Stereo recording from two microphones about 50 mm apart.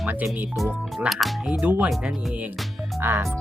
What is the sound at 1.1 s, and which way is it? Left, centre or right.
Speech, centre.